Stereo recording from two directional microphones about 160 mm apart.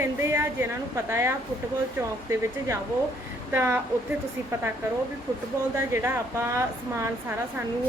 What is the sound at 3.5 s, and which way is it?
Speech, 15° right (ahead or behind).